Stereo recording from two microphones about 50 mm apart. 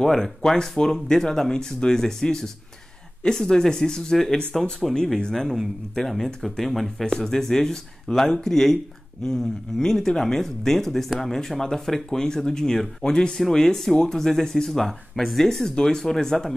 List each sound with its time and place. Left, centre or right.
0.0 s speech: centre